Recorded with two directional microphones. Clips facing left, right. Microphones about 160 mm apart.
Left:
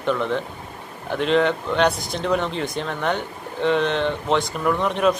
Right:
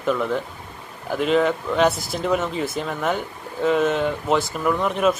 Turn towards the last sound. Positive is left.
turn(degrees=0)  # may be behind; listen again after turning